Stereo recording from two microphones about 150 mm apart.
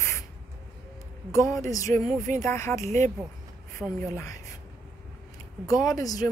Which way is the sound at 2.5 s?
15° left (ahead or behind).